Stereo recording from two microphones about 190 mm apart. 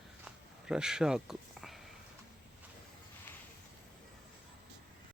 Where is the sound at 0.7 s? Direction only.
5° right (ahead or behind).